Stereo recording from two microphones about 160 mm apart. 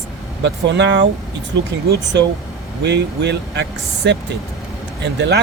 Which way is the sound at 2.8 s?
90° right.